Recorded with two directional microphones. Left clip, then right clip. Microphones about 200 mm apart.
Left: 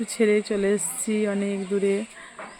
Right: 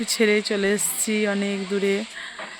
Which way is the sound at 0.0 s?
5° left (ahead or behind).